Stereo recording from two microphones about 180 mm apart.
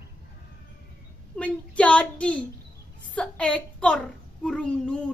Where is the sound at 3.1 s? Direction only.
5° left (ahead or behind).